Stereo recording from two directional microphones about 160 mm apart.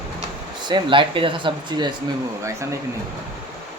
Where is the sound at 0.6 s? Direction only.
30° right (ahead or behind).